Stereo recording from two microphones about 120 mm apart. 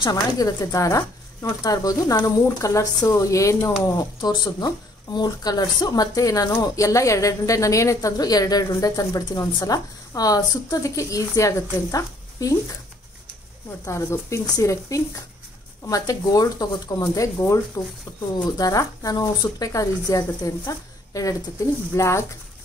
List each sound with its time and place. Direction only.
0.0 s speech: 30° left (ahead or behind)
11.9 s a sound: 30° left (ahead or behind)
13.8 s speech: 25° left (ahead or behind)